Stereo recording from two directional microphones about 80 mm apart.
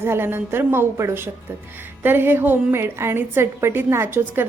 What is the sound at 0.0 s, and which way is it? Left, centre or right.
A woman's voice, right.